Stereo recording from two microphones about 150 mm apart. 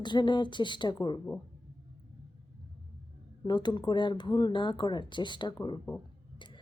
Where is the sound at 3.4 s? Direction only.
30° left (ahead or behind).